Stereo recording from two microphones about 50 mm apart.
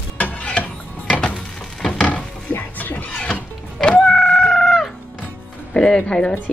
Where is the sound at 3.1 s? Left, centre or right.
Left.